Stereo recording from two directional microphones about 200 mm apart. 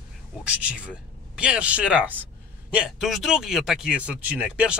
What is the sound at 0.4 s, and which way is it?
Speech, 5° right (ahead or behind).